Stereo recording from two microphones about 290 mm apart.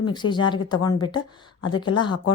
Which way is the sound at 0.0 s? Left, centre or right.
Centre.